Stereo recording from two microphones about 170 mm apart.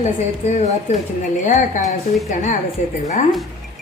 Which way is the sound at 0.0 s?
45° left (ahead or behind).